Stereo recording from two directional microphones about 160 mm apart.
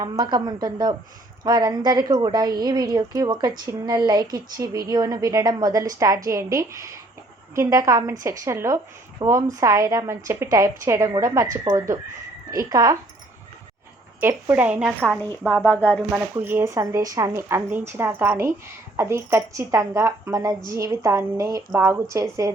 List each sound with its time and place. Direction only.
0.0 s a woman's voice: 25° right (ahead or behind)
14.2 s speech: 15° right (ahead or behind)
15.4 s speech: 10° left (ahead or behind)
16.0 s a woman's voice: 10° right (ahead or behind)